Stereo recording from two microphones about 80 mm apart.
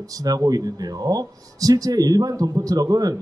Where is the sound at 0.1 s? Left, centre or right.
Right.